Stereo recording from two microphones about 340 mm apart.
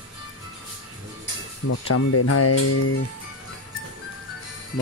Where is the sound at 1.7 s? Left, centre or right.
Left.